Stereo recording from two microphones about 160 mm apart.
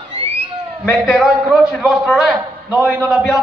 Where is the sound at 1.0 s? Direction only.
5° right (ahead or behind).